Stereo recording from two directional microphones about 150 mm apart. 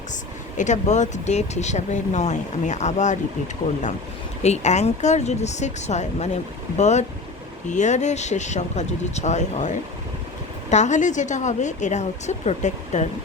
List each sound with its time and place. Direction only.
0.5 s speech: 55° left (ahead or behind)
4.4 s speech: 50° left (ahead or behind)